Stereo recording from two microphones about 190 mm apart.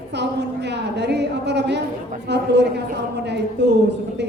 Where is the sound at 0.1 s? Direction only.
65° right (ahead or behind).